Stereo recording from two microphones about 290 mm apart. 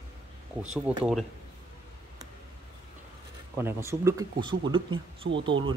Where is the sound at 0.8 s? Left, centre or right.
Centre.